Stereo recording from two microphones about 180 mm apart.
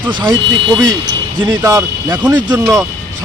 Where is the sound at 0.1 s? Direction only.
25° right (ahead or behind).